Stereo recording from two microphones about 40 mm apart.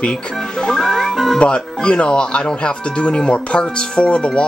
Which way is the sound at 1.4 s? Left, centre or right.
Left.